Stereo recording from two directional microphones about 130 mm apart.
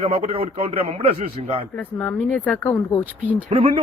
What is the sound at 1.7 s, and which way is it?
Speech, 10° left (ahead or behind).